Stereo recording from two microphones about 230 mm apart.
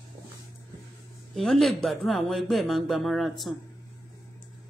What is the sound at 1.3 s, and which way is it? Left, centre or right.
Speech, centre.